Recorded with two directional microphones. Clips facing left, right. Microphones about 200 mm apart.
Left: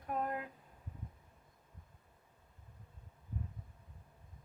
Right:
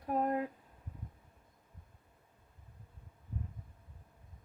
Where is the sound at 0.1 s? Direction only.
30° right (ahead or behind).